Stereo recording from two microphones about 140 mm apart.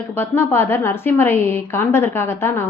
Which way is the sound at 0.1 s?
15° left (ahead or behind).